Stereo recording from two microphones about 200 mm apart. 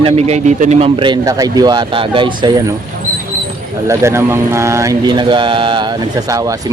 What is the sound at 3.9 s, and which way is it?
Speech, 15° right (ahead or behind).